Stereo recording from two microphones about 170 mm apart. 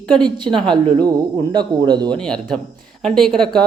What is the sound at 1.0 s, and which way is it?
Speech, 25° right (ahead or behind).